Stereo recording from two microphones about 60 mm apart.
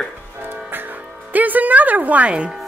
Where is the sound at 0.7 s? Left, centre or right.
Right.